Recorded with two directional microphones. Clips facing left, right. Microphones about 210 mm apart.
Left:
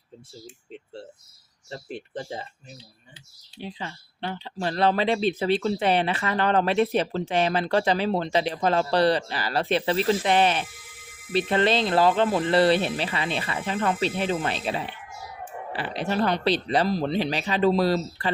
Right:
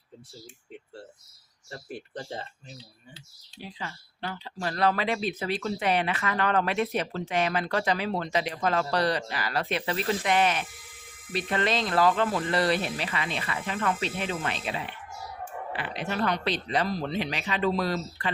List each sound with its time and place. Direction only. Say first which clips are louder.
1.7 s speech: left 4 dB; 20° left (ahead or behind)
3.6 s speech: left 4 dB; 25° left (ahead or behind)